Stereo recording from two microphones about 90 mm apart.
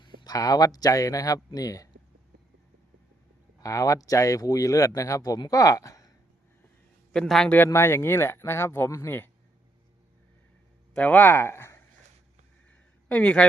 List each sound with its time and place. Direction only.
0.0 s a sound: 60° left (ahead or behind)
0.3 s speech: 45° left (ahead or behind)
3.6 s speech: 40° left (ahead or behind)
7.1 s a man's voice: 5° left (ahead or behind)
7.5 s speech: 25° left (ahead or behind)
10.9 s speech: 15° left (ahead or behind)
13.1 s speech: 15° left (ahead or behind)